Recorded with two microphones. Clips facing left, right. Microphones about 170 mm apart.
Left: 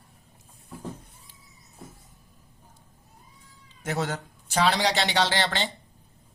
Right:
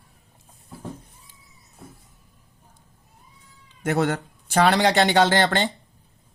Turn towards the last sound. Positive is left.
turn(degrees=-50)  # may be behind; listen again after turning